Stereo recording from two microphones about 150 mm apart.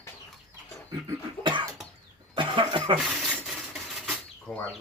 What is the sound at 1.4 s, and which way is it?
Cough, 30° right (ahead or behind).